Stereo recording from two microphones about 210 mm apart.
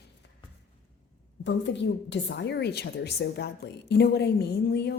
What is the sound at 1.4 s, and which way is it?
A woman's voice, 60° left (ahead or behind).